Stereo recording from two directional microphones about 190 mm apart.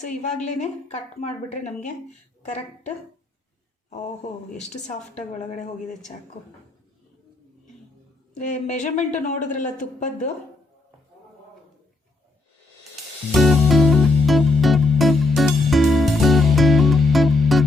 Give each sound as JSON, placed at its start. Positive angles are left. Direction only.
{"t": 0.0, "sound": "speech", "side_deg": 40}
{"t": 4.7, "sound": "speech", "side_deg": 40}
{"t": 8.4, "sound": "speech", "side_deg": 40}
{"t": 13.3, "sound": "music", "side_deg": 0}